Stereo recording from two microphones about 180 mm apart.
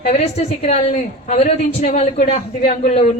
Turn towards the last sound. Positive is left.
turn(degrees=35)  # may be behind; listen again after turning